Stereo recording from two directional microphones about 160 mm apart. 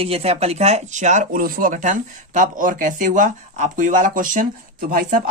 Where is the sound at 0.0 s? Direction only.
40° right (ahead or behind).